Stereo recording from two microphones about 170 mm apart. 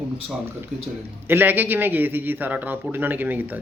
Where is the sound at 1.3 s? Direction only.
10° right (ahead or behind).